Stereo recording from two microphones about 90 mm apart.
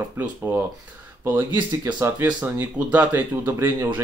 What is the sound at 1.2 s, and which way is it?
Speech, 20° right (ahead or behind).